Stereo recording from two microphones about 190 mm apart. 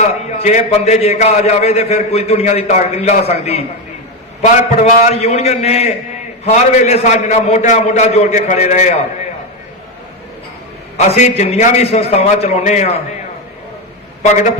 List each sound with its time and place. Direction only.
0.3 s a man's voice: 40° left (ahead or behind)
4.8 s a man's voice: 35° left (ahead or behind)
10.9 s a man's voice: 35° left (ahead or behind)
14.2 s a man's voice: 40° left (ahead or behind)